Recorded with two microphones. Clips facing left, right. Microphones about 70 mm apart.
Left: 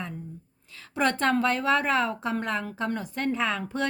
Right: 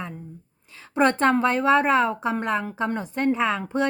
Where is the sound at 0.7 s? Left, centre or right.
Right.